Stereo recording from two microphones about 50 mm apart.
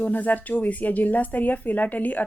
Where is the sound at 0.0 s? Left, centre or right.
Left.